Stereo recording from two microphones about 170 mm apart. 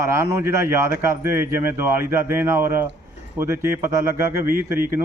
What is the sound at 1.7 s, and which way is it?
Speech, 15° right (ahead or behind).